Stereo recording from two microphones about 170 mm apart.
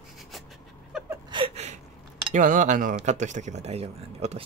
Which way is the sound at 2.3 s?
50° right (ahead or behind).